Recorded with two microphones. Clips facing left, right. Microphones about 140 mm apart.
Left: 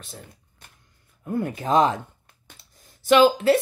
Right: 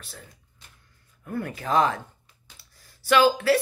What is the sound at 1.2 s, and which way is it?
A woman's voice, 20° left (ahead or behind).